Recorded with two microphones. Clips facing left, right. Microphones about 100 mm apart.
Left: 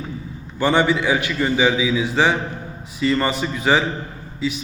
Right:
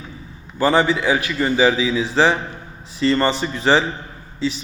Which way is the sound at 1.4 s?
Centre (ahead or behind).